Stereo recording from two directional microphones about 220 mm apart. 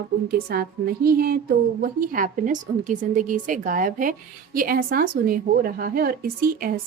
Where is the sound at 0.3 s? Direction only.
45° right (ahead or behind).